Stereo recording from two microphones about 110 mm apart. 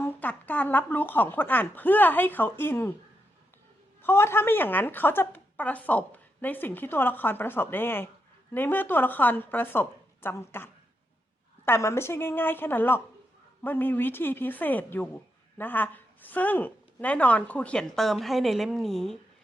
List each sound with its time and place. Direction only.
0.0 s speech: 15° left (ahead or behind)
4.0 s a woman's voice: 20° left (ahead or behind); by 19.2 s 5° left (ahead or behind)